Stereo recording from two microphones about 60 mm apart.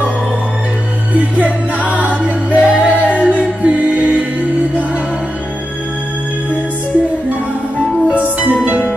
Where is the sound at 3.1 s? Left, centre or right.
Left.